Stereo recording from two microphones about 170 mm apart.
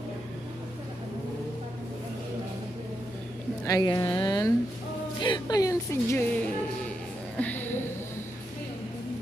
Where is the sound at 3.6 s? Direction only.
20° left (ahead or behind).